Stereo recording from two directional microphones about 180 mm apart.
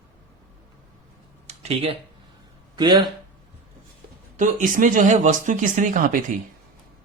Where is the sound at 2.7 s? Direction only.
25° right (ahead or behind).